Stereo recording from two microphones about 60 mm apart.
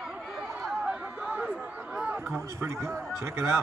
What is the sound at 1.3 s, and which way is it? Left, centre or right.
Chatter, right.